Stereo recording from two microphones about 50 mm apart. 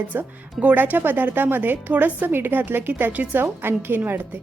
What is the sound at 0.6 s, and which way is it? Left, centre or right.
A woman's voice, right.